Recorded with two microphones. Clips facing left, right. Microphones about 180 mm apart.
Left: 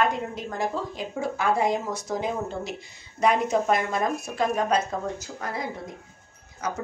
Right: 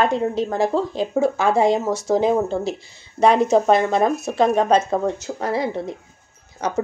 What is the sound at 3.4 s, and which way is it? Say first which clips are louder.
Speech: right 8 dB; 85° right.